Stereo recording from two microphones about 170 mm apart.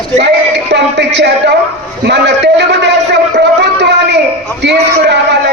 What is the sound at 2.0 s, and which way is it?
Speech, 85° right.